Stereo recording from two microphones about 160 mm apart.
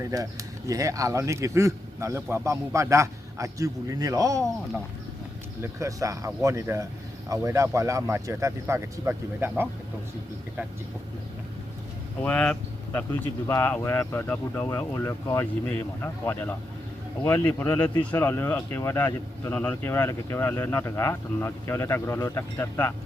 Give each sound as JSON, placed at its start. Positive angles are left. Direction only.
{"t": 0.0, "sound": "speech", "side_deg": -20}
{"t": 5.6, "sound": "speech", "side_deg": -20}
{"t": 12.2, "sound": "speech", "side_deg": 5}